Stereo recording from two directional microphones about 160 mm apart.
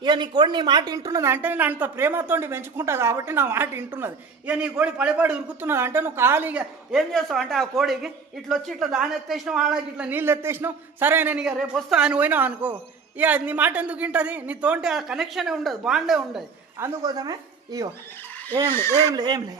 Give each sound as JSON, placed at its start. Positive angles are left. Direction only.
{"t": 0.0, "sound": "speech", "side_deg": -30}
{"t": 16.7, "sound": "speech", "side_deg": -20}
{"t": 18.7, "sound": "speech", "side_deg": 15}
{"t": 19.1, "sound": "speech", "side_deg": -25}